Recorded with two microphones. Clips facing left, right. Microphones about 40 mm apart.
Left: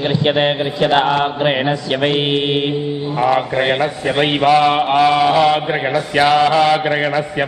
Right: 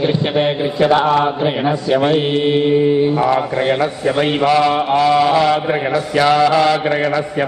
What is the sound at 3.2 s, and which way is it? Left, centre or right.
Speech, centre.